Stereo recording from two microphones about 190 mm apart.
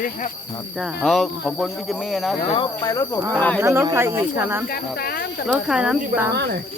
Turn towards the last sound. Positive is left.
turn(degrees=-60)  # may be behind; listen again after turning